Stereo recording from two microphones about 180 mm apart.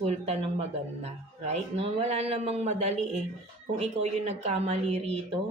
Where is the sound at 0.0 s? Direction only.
35° right (ahead or behind).